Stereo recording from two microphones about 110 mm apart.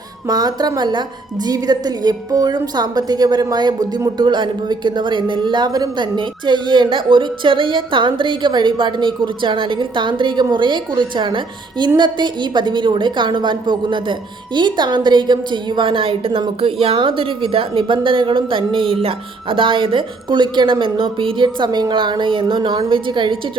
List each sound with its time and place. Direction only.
0.3 s speech: 40° right (ahead or behind)